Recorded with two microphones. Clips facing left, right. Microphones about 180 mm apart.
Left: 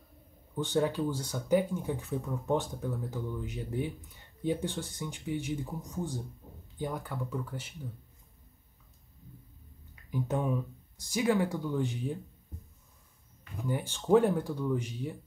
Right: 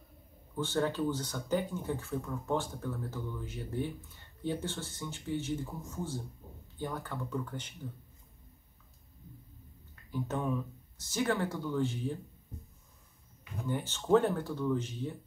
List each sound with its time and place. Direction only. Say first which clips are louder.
0.6 s speech: left 2 dB; 15° left (ahead or behind)
10.1 s speech: left 2 dB; 15° left (ahead or behind)
13.7 s speech: left 1 dB; 10° left (ahead or behind)